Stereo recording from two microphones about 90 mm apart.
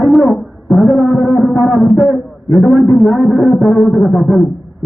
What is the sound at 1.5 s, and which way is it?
Speech, 25° left (ahead or behind).